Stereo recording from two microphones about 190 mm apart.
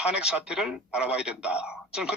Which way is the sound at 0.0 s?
5° right (ahead or behind).